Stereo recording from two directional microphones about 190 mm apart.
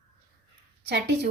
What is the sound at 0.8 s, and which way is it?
Speech, 60° right (ahead or behind).